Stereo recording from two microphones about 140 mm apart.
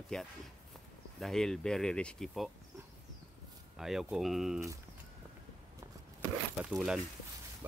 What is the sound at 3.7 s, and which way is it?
Speech, centre (ahead or behind).